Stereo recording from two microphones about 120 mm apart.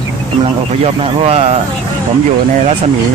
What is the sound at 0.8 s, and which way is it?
Speech, 60° right (ahead or behind).